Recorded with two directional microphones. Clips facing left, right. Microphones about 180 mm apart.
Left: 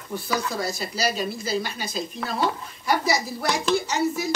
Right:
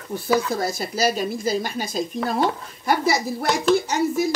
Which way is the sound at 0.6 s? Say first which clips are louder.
Right 4 dB; 50° right (ahead or behind).